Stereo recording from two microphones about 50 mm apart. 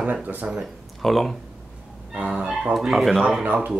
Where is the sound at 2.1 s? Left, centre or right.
Right.